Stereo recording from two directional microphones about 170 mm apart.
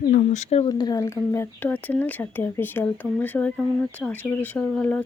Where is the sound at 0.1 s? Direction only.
45° left (ahead or behind).